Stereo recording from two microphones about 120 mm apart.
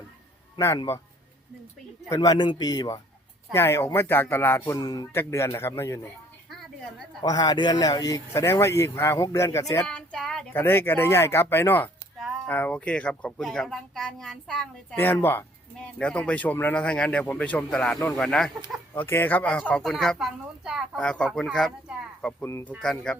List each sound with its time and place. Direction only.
2.0 s a man's voice: 30° left (ahead or behind)
3.5 s speech: 20° left (ahead or behind)
5.1 s speech: 20° left (ahead or behind)
7.2 s speech: 35° left (ahead or behind)
9.8 s a sound: 5° left (ahead or behind)
10.5 s speech: 20° left (ahead or behind)
14.9 s speech: 20° left (ahead or behind)
18.9 s speech: 15° left (ahead or behind)
22.4 s speech: 25° left (ahead or behind)
22.8 s speech: 5° left (ahead or behind)